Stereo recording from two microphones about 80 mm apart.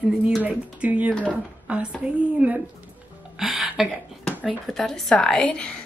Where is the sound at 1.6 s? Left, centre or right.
Centre.